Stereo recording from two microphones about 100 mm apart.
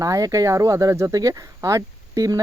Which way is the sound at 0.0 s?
35° right (ahead or behind).